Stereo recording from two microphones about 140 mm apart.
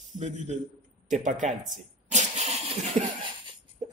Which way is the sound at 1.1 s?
60° right (ahead or behind).